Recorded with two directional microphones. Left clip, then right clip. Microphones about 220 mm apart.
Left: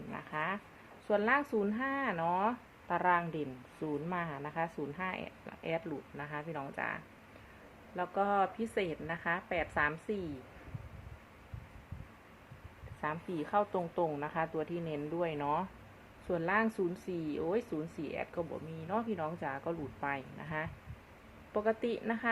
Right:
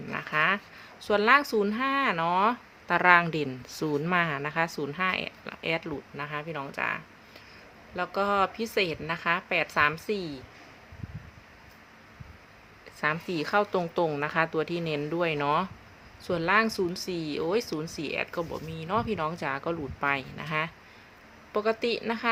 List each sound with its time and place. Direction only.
0.1 s a sound: 35° right (ahead or behind)
1.0 s a woman's voice: 30° right (ahead or behind)
13.0 s a woman's voice: 35° right (ahead or behind)